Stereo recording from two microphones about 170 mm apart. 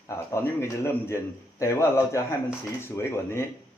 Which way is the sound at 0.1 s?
15° left (ahead or behind).